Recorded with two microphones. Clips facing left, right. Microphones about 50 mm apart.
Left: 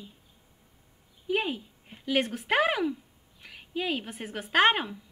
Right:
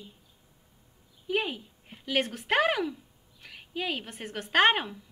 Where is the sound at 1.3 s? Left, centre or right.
Centre.